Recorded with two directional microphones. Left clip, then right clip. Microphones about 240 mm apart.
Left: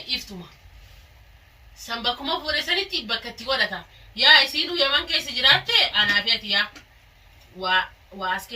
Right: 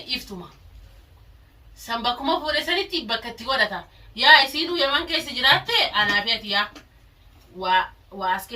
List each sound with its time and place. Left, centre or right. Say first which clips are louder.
1.9 s a woman's voice: right 2 dB; centre